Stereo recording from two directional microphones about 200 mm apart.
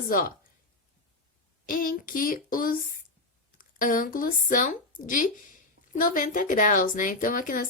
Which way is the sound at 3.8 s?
45° left (ahead or behind).